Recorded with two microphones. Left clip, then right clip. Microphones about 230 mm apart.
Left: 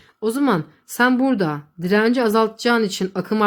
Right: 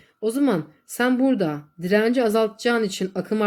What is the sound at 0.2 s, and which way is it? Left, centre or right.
Speech, left.